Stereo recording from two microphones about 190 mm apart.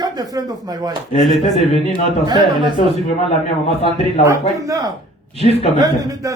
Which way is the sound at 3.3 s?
30° left (ahead or behind).